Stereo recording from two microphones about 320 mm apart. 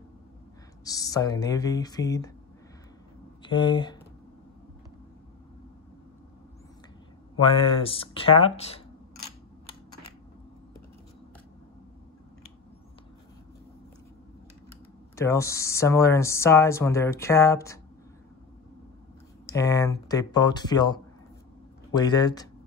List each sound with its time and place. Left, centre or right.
0.8 s speech: centre
3.4 s speech: centre
7.3 s speech: centre
15.1 s speech: centre
19.5 s speech: centre